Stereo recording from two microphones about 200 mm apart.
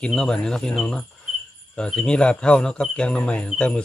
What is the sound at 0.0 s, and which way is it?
Speech, 5° left (ahead or behind).